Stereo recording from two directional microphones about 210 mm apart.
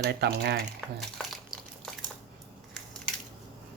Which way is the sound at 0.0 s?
50° right (ahead or behind).